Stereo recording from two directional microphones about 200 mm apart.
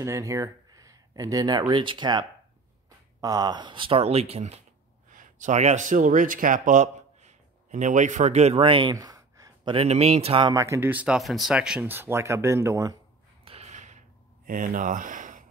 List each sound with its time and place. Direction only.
0.0 s speech: 15° right (ahead or behind)
10.5 s speech: 15° right (ahead or behind)
13.4 s a sound: 30° right (ahead or behind)